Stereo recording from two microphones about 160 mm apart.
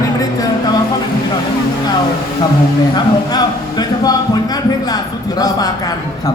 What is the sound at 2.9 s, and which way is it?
Speech, 25° left (ahead or behind).